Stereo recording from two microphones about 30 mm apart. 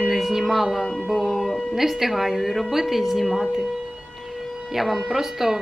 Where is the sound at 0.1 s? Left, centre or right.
Centre.